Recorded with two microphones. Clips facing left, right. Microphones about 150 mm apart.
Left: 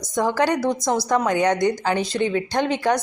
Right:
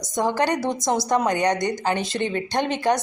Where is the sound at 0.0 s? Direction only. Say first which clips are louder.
Left 2 dB; 20° right (ahead or behind).